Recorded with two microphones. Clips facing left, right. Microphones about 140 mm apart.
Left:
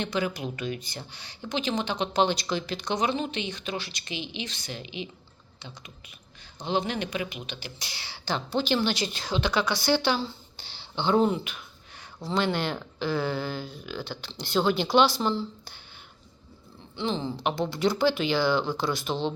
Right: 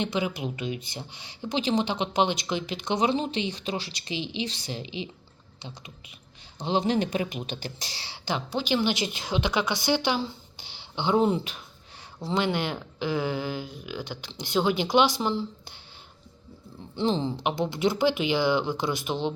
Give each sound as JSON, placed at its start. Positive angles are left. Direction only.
{"t": 0.0, "sound": "speech", "side_deg": -20}
{"t": 11.3, "sound": "speech", "side_deg": -30}
{"t": 12.2, "sound": "speech", "side_deg": -20}
{"t": 16.9, "sound": "speech", "side_deg": -35}
{"t": 17.2, "sound": "speech", "side_deg": -20}